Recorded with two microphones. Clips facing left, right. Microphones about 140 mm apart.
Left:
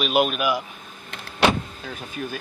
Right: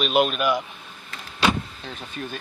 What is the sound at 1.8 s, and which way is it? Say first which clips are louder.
Speech: left 2 dB; 5° left (ahead or behind).